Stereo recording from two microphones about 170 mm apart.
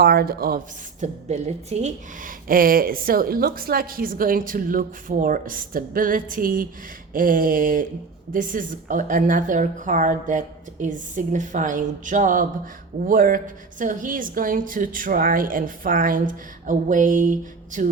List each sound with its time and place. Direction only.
0.0 s a woman's voice: 65° right (ahead or behind)
1.0 s a woman's voice: 40° right (ahead or behind)
2.5 s a woman's voice: 55° right (ahead or behind)